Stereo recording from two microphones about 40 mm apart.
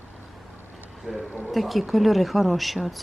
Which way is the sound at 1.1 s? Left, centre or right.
Centre.